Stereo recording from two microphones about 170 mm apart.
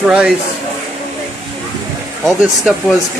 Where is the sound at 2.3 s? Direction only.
Centre (ahead or behind).